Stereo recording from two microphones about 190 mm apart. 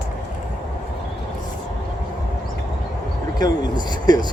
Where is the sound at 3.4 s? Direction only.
20° left (ahead or behind).